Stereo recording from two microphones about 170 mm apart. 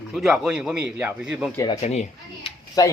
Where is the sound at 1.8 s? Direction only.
40° left (ahead or behind).